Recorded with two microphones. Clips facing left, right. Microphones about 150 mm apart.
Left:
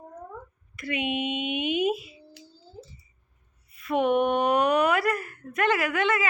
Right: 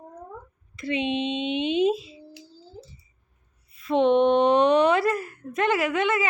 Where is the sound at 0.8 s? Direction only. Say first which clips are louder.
Right 3 dB; 25° right (ahead or behind).